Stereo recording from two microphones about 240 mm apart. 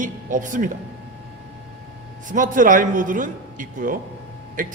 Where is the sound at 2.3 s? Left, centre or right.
Right.